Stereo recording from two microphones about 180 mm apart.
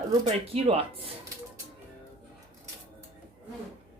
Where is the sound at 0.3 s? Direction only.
35° right (ahead or behind).